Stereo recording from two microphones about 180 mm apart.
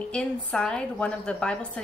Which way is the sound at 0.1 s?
5° left (ahead or behind).